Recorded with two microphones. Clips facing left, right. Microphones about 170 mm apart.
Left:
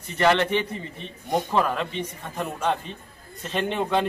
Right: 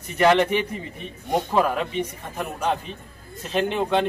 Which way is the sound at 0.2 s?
15° right (ahead or behind).